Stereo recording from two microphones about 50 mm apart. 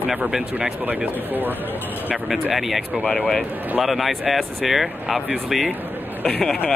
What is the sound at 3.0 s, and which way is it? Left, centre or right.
Speech, centre.